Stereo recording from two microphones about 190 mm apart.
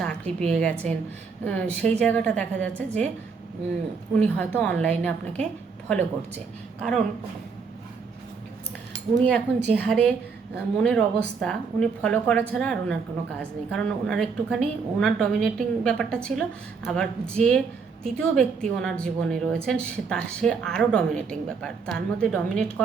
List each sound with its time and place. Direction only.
0.0 s a sound: 5° left (ahead or behind)
0.5 s a woman's voice: 5° left (ahead or behind)
4.1 s a woman's voice: 5° left (ahead or behind)
9.2 s speech: 5° left (ahead or behind)